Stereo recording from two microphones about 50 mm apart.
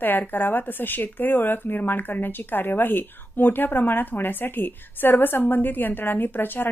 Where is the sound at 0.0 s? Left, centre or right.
Left.